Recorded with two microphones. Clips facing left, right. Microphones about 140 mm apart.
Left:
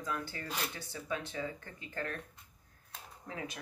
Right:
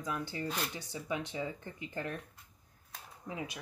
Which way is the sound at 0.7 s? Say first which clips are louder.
Right 2 dB; 15° right (ahead or behind).